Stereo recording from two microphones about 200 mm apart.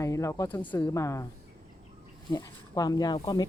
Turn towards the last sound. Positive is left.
turn(degrees=20)  # may be behind; listen again after turning